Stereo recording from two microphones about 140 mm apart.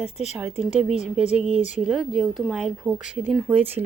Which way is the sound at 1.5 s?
55° left (ahead or behind).